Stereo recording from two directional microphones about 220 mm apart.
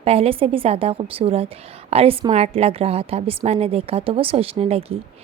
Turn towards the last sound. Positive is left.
turn(degrees=-25)  # may be behind; listen again after turning